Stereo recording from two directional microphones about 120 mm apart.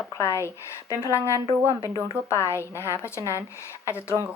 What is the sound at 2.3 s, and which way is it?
A woman's voice, 20° left (ahead or behind).